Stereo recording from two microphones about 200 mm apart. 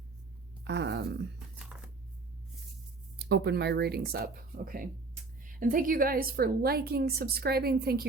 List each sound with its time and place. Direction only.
0.6 s speech: 60° right (ahead or behind)
1.7 s a sound: 5° right (ahead or behind)
3.2 s a woman's voice: 55° right (ahead or behind)